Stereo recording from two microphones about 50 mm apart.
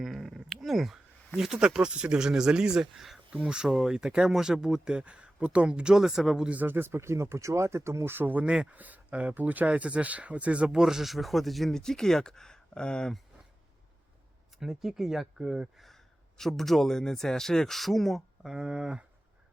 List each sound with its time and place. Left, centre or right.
0.0 s a sound: centre
1.4 s speech: centre
3.4 s speech: centre
6.7 s speech: right
8.1 s speech: right
10.8 s speech: centre
14.6 s speech: centre
16.4 s speech: centre
18.5 s speech: centre